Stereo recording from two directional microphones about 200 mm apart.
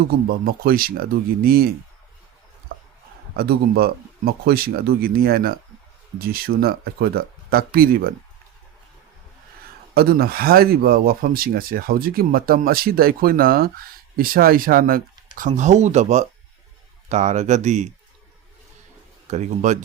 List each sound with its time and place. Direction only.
0.3 s speech: 50° right (ahead or behind)
2.7 s a sound: 45° right (ahead or behind)
3.3 s speech: 50° right (ahead or behind)
9.9 s speech: 50° right (ahead or behind)
19.3 s speech: 35° right (ahead or behind)